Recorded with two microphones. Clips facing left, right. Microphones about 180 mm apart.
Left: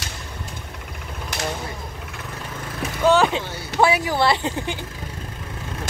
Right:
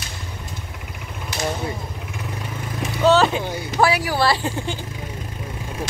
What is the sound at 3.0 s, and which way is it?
Vehicle, 15° left (ahead or behind).